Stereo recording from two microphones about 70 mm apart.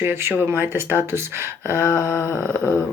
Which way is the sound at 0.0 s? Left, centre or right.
Right.